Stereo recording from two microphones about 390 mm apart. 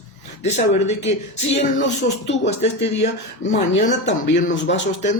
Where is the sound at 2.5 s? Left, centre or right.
Centre.